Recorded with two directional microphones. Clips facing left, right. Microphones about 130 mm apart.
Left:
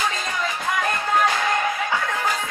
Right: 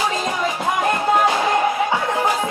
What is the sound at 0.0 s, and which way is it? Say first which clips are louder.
Music: right 5 dB; 20° right (ahead or behind).